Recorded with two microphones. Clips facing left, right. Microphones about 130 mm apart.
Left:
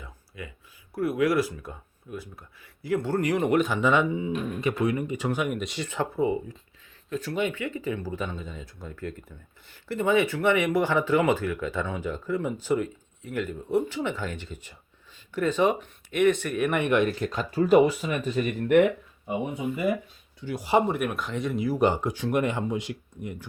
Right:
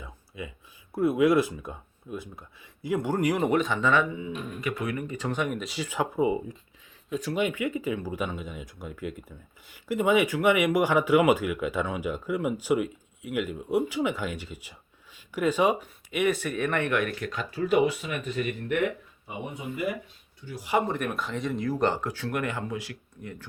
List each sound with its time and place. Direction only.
0.0 s a sound: 20° right (ahead or behind)
0.9 s speech: 25° right (ahead or behind)
3.5 s speech: 5° left (ahead or behind); by 18.5 s 35° left (ahead or behind)
20.4 s speech: 90° left
20.8 s speech: 10° left (ahead or behind)